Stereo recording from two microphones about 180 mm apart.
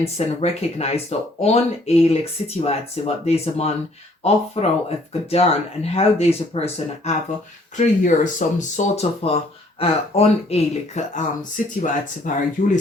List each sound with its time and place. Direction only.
0.0 s speech: 35° left (ahead or behind)